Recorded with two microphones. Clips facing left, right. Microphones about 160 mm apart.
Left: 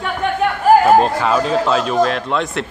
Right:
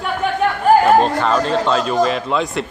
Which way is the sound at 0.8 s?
5° left (ahead or behind).